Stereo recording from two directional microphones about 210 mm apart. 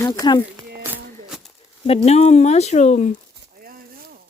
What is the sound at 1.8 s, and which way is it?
Speech, 30° left (ahead or behind).